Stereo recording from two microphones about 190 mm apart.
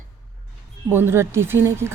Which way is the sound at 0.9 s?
10° right (ahead or behind).